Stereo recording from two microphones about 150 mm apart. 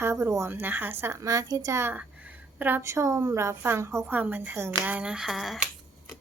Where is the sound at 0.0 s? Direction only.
20° right (ahead or behind); by 5.6 s centre (ahead or behind).